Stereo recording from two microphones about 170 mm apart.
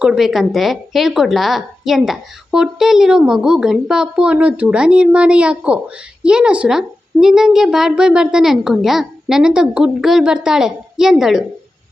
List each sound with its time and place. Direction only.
0.0 s a woman's voice: centre (ahead or behind)